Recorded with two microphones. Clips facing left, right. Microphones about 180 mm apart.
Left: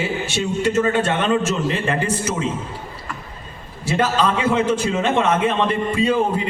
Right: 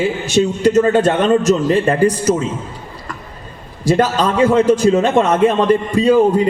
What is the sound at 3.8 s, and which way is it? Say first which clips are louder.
A man's voice: right 5 dB; 40° right (ahead or behind).